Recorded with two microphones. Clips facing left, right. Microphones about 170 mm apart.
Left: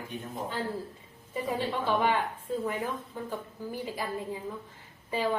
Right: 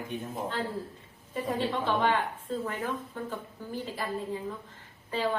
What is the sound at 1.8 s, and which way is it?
A woman's voice, 10° left (ahead or behind).